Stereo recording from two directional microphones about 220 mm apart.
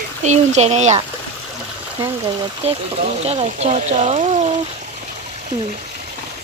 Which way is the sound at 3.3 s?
30° right (ahead or behind).